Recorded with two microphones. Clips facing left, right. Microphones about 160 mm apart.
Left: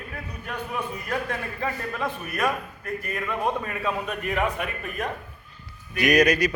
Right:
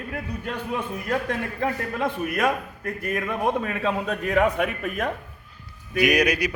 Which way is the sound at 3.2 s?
20° right (ahead or behind).